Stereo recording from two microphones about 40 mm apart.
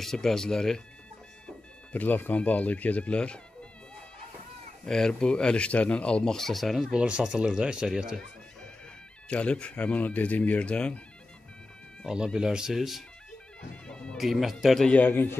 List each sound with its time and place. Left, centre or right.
0.0 s speech: centre
1.9 s speech: left
4.8 s speech: centre
5.7 s speech: left
6.2 s speech: centre
6.9 s speech: right
9.3 s speech: left
9.8 s speech: left
12.4 s speech: centre
12.7 s speech: centre
14.1 s speech: centre
15.0 s a man's voice: left